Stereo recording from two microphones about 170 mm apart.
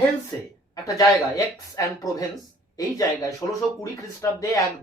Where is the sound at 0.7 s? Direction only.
20° left (ahead or behind).